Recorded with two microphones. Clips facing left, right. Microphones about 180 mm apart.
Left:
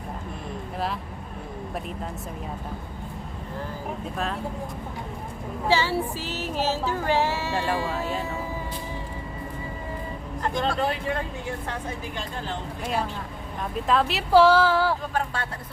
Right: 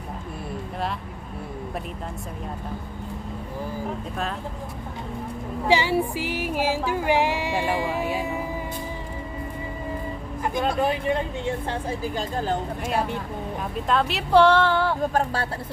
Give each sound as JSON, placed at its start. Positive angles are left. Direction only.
{"t": 5.6, "sound": "music", "side_deg": -15}
{"t": 10.4, "sound": "speech", "side_deg": -10}
{"t": 12.8, "sound": "speech", "side_deg": -5}
{"t": 15.1, "sound": "speech", "side_deg": -40}